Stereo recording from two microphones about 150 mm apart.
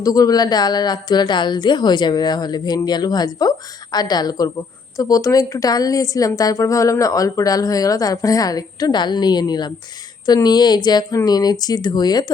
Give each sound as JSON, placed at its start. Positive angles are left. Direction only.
{"t": 0.0, "sound": "a woman's voice", "side_deg": 25}